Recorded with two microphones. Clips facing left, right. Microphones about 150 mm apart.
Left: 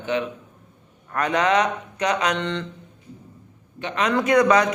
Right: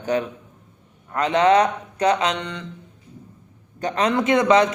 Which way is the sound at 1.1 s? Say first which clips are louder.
Right 4 dB; 25° right (ahead or behind).